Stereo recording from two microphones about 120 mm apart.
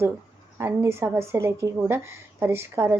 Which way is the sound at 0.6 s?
20° right (ahead or behind).